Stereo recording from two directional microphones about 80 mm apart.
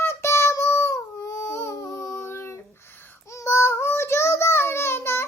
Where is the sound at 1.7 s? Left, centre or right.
Left.